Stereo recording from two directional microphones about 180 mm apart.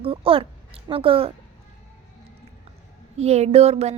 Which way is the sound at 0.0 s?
30° right (ahead or behind).